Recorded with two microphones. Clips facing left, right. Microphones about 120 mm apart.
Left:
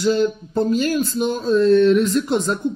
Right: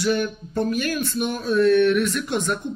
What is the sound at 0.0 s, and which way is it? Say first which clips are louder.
Speech: left 5 dB; 25° left (ahead or behind).